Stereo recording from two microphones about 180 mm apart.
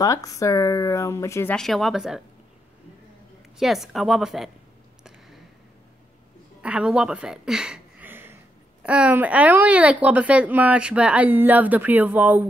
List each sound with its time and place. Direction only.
0.0 s speech: 20° left (ahead or behind)
1.5 s a woman's voice: centre (ahead or behind)
3.5 s a woman's voice: centre (ahead or behind)
6.6 s a woman's voice: 5° right (ahead or behind)